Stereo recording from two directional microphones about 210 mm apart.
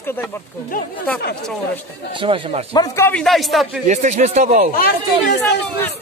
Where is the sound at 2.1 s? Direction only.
25° right (ahead or behind).